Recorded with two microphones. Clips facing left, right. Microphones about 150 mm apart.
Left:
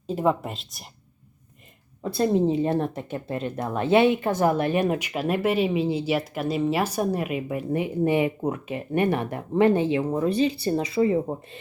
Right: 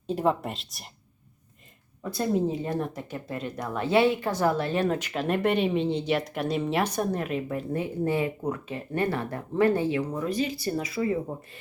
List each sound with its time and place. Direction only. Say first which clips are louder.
0.1 s speech: left 2 dB; centre (ahead or behind)
2.1 s speech: left 5 dB; 25° left (ahead or behind)